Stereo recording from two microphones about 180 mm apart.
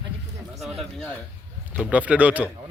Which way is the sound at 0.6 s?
Centre (ahead or behind).